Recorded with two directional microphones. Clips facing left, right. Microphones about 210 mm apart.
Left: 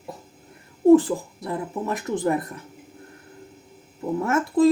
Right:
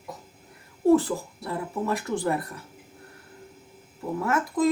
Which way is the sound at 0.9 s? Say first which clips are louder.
Left 5 dB; 15° left (ahead or behind).